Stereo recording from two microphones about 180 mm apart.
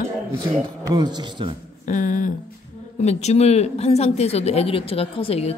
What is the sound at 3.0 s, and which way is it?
A woman's voice, 35° left (ahead or behind).